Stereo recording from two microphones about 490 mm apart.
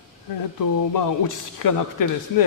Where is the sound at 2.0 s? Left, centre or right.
Left.